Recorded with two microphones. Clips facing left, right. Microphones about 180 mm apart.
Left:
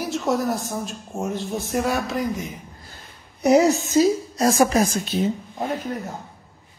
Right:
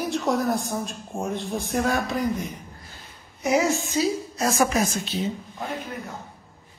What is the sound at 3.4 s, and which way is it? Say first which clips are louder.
A woman's voice: left 6 dB; 35° left (ahead or behind).